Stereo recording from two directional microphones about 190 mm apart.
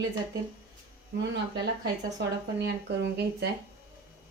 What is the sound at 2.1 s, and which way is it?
Speech, 65° right (ahead or behind).